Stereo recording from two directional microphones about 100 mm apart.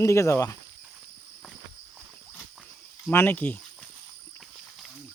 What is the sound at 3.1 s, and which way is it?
Speech, 20° left (ahead or behind).